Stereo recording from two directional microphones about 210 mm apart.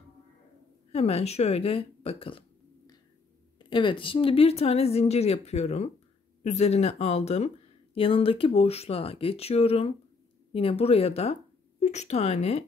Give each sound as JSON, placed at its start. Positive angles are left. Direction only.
{"t": 0.9, "sound": "speech", "side_deg": 30}
{"t": 3.5, "sound": "speech", "side_deg": 25}